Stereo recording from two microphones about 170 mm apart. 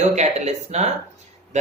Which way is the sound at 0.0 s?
40° right (ahead or behind).